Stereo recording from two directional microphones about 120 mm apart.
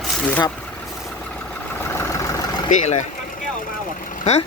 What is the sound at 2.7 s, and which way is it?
Speech, 80° left.